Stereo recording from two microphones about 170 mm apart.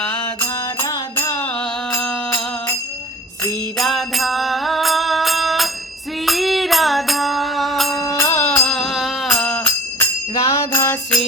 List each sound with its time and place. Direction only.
0.0 s mantra: 10° left (ahead or behind)
0.4 s music: 20° left (ahead or behind); by 7.9 s centre (ahead or behind)
7.9 s music: 20° left (ahead or behind)
10.4 s music: 15° left (ahead or behind)